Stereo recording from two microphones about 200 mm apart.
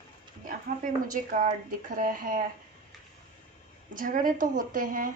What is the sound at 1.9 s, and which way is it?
Speech, 40° right (ahead or behind).